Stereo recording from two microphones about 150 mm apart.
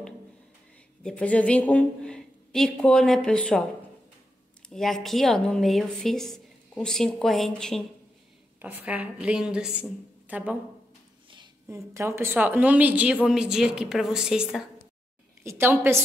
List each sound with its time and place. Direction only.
1.0 s a woman's voice: 10° left (ahead or behind)
4.6 s a woman's voice: centre (ahead or behind)
8.5 s a woman's voice: 10° right (ahead or behind)
11.6 s a woman's voice: 20° right (ahead or behind)
15.4 s a woman's voice: 15° right (ahead or behind)